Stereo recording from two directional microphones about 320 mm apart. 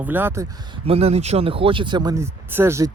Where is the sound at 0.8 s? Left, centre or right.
Centre.